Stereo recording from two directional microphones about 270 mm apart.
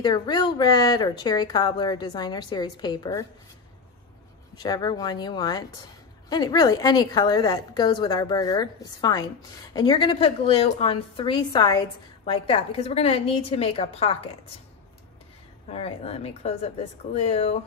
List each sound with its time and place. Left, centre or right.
0.0 s speech: centre
4.6 s a woman's voice: centre
15.7 s a woman's voice: left